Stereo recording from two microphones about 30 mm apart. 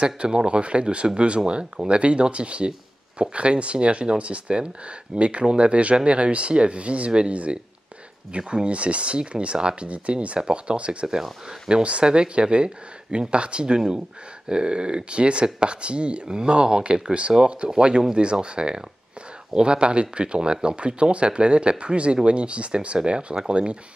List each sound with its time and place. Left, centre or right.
0.0 s speech: right
8.4 s speech: right
8.6 s speech: right
9.8 s speech: right
13.7 s speech: right
14.5 s speech: right
17.3 s speech: centre
17.7 s speech: right